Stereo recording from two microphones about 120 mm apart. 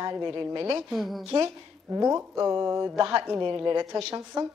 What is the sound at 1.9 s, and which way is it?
Speech, 30° right (ahead or behind).